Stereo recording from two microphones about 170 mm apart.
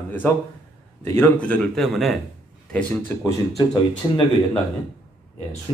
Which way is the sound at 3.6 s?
25° left (ahead or behind).